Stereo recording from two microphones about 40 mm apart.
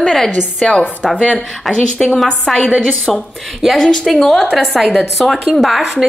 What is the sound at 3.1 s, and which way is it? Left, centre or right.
A woman's voice, centre.